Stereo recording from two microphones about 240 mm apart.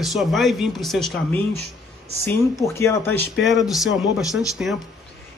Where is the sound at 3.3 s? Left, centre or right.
Left.